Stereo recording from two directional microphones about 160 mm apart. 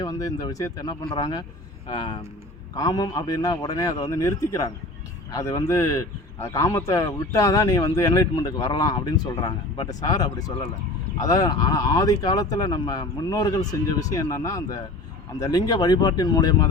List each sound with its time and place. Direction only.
0.0 s a man's voice: 20° left (ahead or behind)